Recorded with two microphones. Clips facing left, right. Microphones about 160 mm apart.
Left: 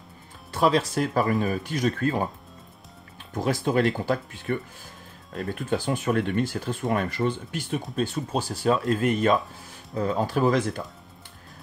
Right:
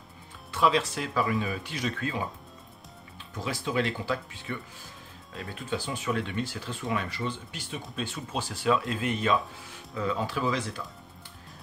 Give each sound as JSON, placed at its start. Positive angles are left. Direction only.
{"t": 0.5, "sound": "speech", "side_deg": 45}
{"t": 3.3, "sound": "speech", "side_deg": 50}